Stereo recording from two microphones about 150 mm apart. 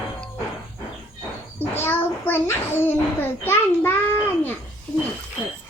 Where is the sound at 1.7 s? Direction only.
15° left (ahead or behind).